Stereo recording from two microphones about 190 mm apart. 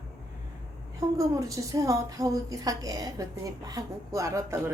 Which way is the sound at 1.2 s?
15° right (ahead or behind).